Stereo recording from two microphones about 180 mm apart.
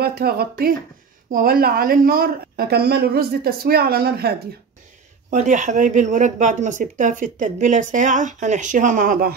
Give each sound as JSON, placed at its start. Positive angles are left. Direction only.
{"t": 0.0, "sound": "a woman's voice", "side_deg": -60}
{"t": 5.3, "sound": "speech", "side_deg": -40}